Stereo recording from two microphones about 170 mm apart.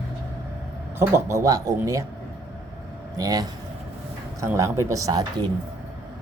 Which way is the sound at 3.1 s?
20° right (ahead or behind).